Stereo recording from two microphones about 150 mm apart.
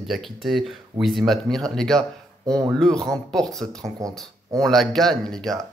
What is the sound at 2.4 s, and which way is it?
Speech, 25° right (ahead or behind).